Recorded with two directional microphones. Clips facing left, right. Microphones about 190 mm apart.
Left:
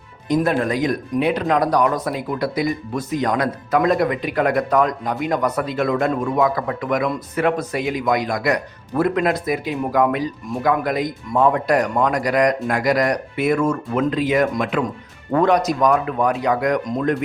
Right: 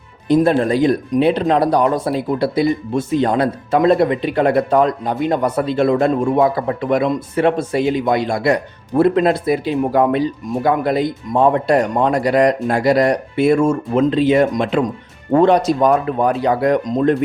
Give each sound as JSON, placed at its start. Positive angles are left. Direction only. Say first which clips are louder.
{"t": 0.3, "sound": "speech", "louder": "right 5 dB", "side_deg": -30}